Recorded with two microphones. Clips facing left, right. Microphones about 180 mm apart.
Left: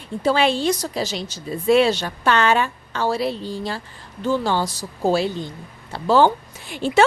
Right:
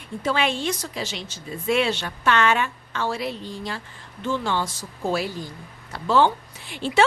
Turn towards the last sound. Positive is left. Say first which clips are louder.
# left 4 dB
turn(degrees=45)  # may be behind; listen again after turning